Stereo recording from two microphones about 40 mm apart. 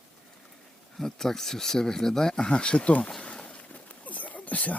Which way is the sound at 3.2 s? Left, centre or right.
Left.